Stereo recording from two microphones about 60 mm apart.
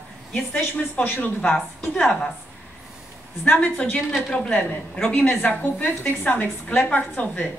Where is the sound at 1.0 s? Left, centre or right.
Left.